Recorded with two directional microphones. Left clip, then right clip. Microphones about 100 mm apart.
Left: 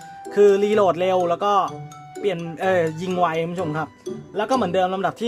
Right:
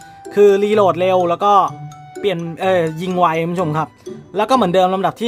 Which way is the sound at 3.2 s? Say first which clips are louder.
Right 6 dB; 30° right (ahead or behind).